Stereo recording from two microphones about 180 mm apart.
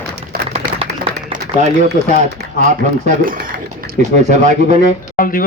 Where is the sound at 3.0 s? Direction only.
50° right (ahead or behind).